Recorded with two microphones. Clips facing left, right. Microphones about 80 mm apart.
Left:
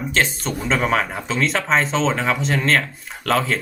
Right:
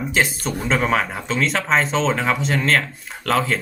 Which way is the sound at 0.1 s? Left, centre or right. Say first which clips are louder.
Even; centre.